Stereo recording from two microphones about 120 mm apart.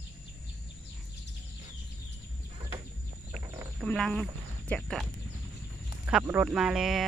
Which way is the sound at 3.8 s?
5° left (ahead or behind).